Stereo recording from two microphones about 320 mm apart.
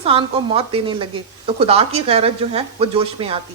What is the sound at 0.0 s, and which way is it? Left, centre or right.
Speech, centre.